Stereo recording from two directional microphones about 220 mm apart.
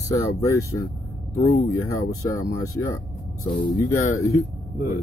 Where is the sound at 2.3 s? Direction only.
10° left (ahead or behind).